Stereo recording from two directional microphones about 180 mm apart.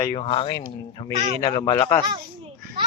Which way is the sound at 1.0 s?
35° right (ahead or behind).